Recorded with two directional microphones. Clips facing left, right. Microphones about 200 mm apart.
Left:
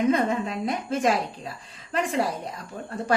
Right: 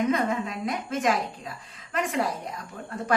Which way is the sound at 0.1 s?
30° left (ahead or behind).